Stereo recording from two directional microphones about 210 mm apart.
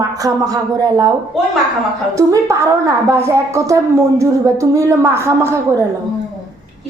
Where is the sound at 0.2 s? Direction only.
15° right (ahead or behind).